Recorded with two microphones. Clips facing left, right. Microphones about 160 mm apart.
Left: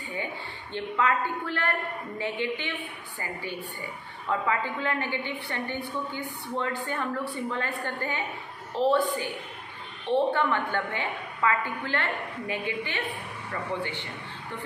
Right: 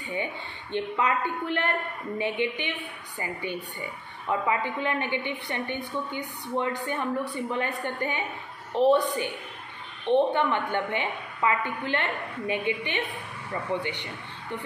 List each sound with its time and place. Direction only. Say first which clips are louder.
0.1 s a woman's voice: right 3 dB; 20° right (ahead or behind)